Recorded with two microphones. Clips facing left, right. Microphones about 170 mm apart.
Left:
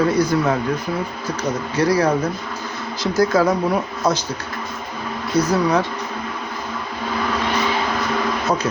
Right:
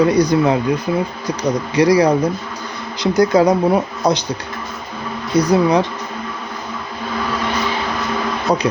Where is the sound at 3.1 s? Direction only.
20° right (ahead or behind).